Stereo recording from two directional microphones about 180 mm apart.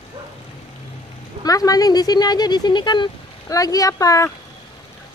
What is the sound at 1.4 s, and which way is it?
Speech, 20° left (ahead or behind).